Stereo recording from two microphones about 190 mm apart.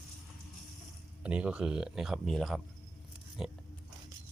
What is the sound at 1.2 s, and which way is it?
Speech, 5° right (ahead or behind).